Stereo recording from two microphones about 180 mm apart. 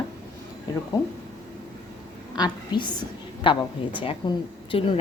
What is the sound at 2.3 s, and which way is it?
A woman's voice, 25° left (ahead or behind).